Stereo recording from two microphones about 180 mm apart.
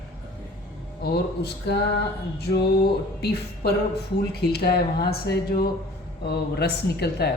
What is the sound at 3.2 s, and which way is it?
A woman's voice, 60° left (ahead or behind).